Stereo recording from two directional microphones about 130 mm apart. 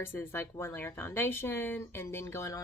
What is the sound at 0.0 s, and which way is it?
Speech, 20° left (ahead or behind).